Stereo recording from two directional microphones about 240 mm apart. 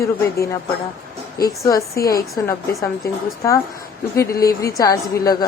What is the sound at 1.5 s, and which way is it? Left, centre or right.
Speech, centre.